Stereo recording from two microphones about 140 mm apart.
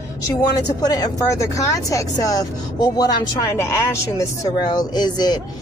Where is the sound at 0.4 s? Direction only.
30° left (ahead or behind).